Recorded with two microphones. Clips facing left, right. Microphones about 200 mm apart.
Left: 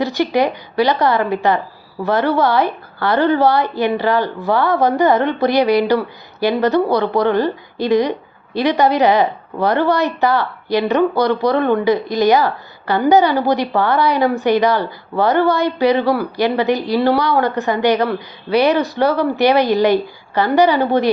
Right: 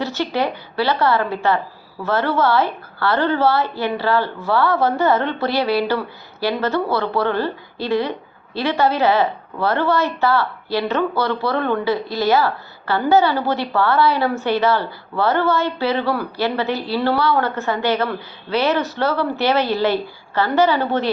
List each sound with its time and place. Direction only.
0.0 s a woman's voice: 15° left (ahead or behind)